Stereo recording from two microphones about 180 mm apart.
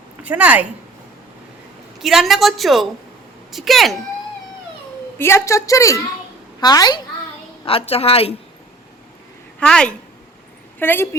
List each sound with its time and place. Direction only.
0.2 s a woman's voice: 10° right (ahead or behind)
2.0 s a woman's voice: centre (ahead or behind)
5.1 s a woman's voice: 15° left (ahead or behind); by 8.4 s 35° left (ahead or behind)
9.6 s a woman's voice: 5° left (ahead or behind)